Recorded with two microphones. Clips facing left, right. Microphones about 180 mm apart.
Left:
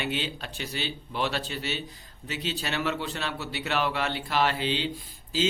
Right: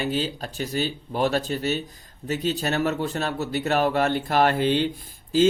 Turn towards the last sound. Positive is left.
turn(degrees=-50)  # may be behind; listen again after turning